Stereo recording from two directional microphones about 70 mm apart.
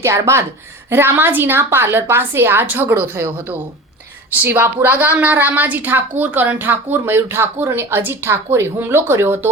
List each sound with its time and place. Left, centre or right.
0.0 s a woman's voice: right
4.4 s a woman's voice: right